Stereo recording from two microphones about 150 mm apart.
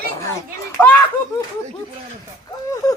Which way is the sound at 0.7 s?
10° left (ahead or behind).